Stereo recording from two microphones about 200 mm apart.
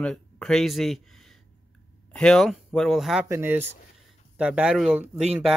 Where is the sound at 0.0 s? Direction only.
Centre (ahead or behind).